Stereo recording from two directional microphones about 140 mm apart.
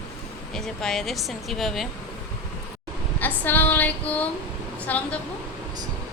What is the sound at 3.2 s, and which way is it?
Female singing, 15° left (ahead or behind).